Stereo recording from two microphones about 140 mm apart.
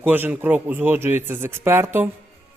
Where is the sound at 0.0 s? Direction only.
10° right (ahead or behind).